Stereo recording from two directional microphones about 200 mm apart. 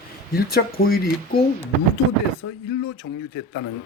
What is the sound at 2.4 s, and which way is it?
Speech, 90° left.